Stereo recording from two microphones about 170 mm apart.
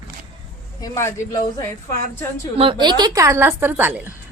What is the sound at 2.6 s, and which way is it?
A woman's voice, 30° right (ahead or behind).